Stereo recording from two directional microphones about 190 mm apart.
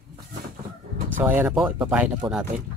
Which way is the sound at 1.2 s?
10° right (ahead or behind).